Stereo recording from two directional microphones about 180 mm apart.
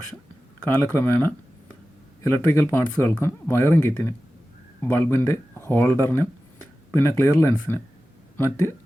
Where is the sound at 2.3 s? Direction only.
15° left (ahead or behind).